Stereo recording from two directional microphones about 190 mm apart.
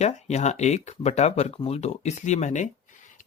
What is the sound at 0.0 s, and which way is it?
Speech, 35° left (ahead or behind).